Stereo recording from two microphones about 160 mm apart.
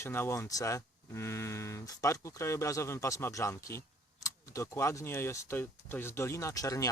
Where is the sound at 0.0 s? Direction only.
15° left (ahead or behind).